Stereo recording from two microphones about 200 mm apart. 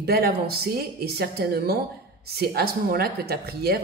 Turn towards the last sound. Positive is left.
turn(degrees=-50)  # may be behind; listen again after turning